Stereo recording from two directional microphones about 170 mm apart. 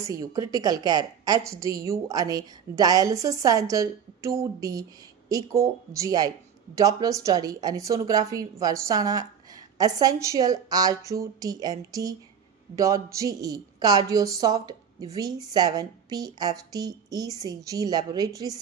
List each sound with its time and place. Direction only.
0.0 s a woman's voice: 20° right (ahead or behind)